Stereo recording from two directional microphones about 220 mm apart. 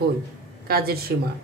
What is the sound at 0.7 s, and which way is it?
Speech, 45° right (ahead or behind).